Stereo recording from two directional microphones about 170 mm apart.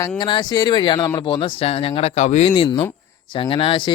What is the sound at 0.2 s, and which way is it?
Speech, 25° left (ahead or behind).